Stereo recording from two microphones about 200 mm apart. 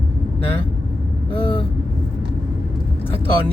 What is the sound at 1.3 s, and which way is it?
Speech, 25° left (ahead or behind).